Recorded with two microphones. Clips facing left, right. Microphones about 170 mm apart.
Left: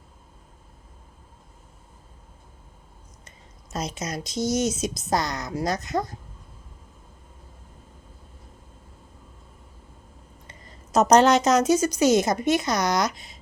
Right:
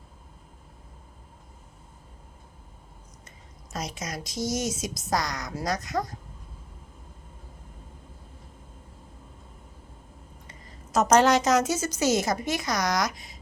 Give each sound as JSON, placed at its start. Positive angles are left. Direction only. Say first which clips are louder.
{"t": 3.7, "sound": "speech", "louder": "left 4 dB", "side_deg": 25}
{"t": 10.9, "sound": "speech", "louder": "left 3 dB", "side_deg": 20}